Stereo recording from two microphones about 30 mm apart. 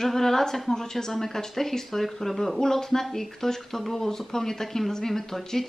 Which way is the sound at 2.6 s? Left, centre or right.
Centre.